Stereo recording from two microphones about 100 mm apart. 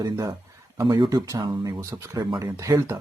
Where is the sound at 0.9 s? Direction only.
50° right (ahead or behind).